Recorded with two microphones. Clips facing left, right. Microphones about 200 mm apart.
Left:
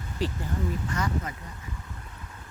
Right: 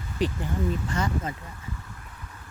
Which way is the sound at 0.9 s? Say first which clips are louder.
Right 2 dB; 25° right (ahead or behind).